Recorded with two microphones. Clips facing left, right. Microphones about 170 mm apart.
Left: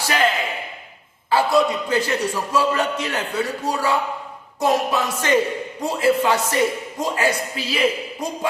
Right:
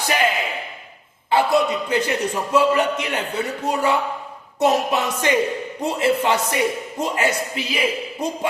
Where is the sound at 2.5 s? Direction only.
20° right (ahead or behind).